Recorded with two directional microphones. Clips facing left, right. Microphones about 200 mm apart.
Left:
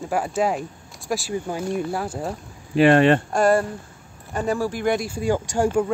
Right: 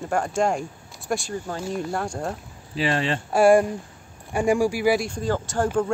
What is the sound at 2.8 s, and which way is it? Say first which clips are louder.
Speech: left 10 dB; 60° left (ahead or behind).